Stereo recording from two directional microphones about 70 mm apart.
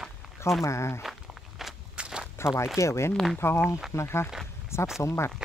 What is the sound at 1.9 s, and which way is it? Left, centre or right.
Walk, centre.